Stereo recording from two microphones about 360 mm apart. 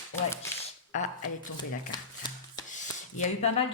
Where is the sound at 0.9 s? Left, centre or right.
Centre.